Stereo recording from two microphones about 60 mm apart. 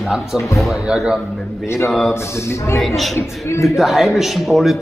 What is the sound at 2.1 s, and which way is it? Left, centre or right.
Speech, left.